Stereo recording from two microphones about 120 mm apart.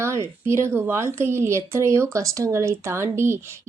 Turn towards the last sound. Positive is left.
turn(degrees=-20)  # may be behind; listen again after turning